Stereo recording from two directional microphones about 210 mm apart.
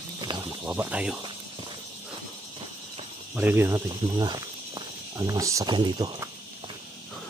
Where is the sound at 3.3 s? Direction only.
10° right (ahead or behind).